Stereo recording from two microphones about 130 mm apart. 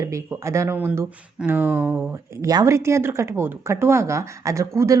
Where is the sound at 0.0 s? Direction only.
25° right (ahead or behind).